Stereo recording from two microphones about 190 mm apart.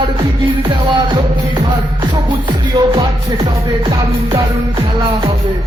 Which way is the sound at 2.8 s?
20° right (ahead or behind).